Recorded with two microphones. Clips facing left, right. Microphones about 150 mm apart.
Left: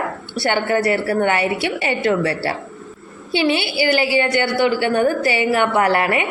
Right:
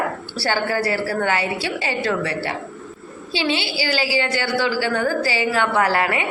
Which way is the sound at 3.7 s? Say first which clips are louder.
Left 5 dB; 25° left (ahead or behind).